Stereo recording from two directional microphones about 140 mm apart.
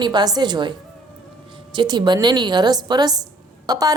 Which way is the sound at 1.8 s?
30° right (ahead or behind).